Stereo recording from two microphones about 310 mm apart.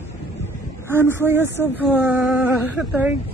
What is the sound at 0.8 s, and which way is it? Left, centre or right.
Speech, centre.